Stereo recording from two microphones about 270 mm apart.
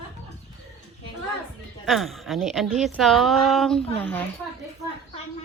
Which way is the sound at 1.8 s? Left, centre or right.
Centre.